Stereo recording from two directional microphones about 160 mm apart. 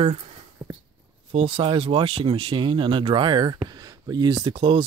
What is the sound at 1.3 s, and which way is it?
Speech, 35° right (ahead or behind).